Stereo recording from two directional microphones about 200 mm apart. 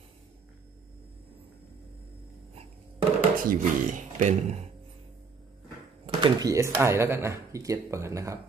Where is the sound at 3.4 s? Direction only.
40° right (ahead or behind).